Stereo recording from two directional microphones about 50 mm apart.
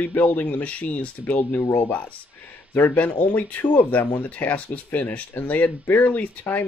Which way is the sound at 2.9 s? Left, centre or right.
Left.